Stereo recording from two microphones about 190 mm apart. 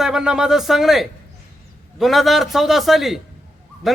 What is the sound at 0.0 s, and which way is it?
A man's voice, 5° right (ahead or behind).